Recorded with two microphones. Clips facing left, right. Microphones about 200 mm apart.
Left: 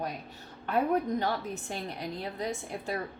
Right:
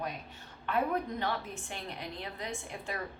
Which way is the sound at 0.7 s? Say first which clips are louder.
Left 4 dB; 40° left (ahead or behind).